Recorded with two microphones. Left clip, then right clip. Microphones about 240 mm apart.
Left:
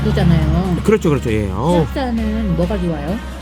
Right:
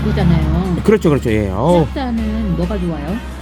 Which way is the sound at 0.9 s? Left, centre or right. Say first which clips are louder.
Right 2 dB; centre.